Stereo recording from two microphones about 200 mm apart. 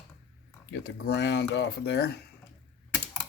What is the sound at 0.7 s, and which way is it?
Speech, 60° left (ahead or behind).